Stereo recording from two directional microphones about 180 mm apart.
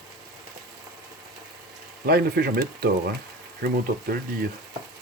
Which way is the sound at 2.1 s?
55° right (ahead or behind).